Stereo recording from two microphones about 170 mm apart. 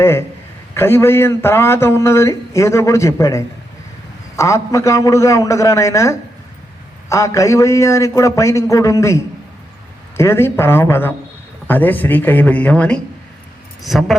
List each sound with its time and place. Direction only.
0.0 s a man's voice: 15° left (ahead or behind)